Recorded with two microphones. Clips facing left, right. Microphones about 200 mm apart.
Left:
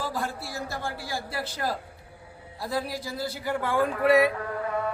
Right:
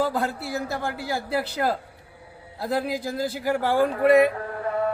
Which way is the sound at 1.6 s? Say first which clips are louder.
Right 5 dB; 80° right.